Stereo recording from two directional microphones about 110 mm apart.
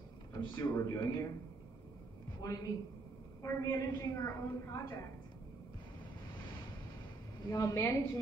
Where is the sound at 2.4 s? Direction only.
35° left (ahead or behind).